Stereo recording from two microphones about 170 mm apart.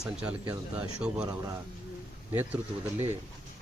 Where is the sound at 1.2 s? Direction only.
20° right (ahead or behind).